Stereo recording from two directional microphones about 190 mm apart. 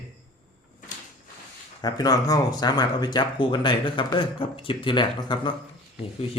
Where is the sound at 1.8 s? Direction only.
20° left (ahead or behind).